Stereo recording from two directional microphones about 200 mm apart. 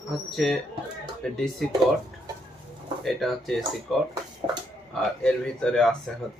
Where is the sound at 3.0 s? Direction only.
Centre (ahead or behind).